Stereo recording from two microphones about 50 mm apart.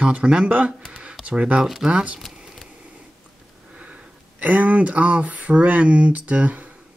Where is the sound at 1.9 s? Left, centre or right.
Right.